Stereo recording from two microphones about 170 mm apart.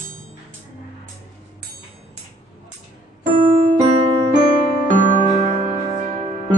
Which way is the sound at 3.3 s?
35° right (ahead or behind).